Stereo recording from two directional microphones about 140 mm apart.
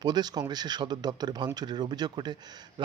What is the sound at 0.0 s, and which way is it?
Speech, 30° right (ahead or behind).